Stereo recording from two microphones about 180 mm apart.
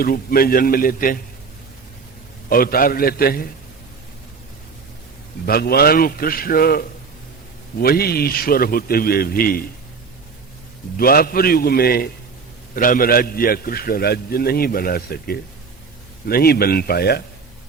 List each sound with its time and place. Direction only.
0.0 s a man's voice: 55° left (ahead or behind)
2.5 s a man's voice: 55° left (ahead or behind)
5.5 s a man's voice: 60° left (ahead or behind)
10.9 s a man's voice: 55° left (ahead or behind)